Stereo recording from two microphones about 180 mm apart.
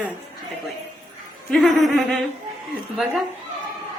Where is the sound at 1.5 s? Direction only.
Centre (ahead or behind).